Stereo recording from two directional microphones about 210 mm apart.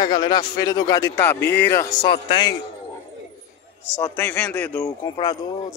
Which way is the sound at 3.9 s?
10° left (ahead or behind).